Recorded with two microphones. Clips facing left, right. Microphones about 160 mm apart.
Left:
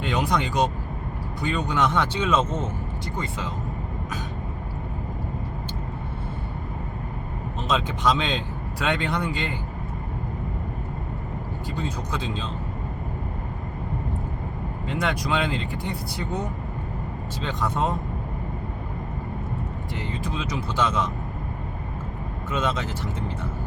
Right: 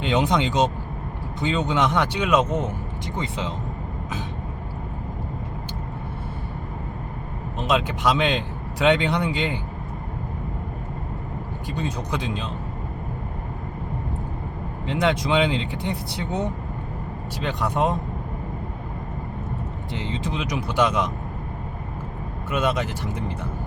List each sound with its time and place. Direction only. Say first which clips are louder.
0.0 s speech: right 3 dB; 20° right (ahead or behind)
7.6 s speech: right 2 dB; 10° right (ahead or behind)
11.7 s speech: right 3 dB; 20° right (ahead or behind)
14.9 s speech: right 5 dB; 20° right (ahead or behind)
17.4 s speech: right 3 dB; 15° right (ahead or behind)
20.2 s speech: right 2 dB; 15° right (ahead or behind)
22.4 s speech: right 3 dB; 10° right (ahead or behind)